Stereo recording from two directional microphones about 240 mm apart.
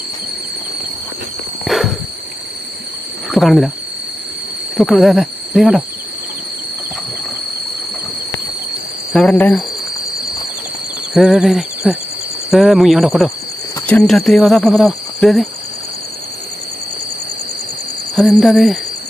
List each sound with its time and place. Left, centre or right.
1.6 s a sound: centre
3.2 s speech: centre
4.8 s speech: centre
9.1 s speech: centre
11.1 s speech: centre
18.2 s speech: centre